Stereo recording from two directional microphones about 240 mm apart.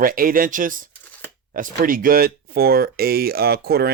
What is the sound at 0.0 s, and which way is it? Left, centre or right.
Speech, right.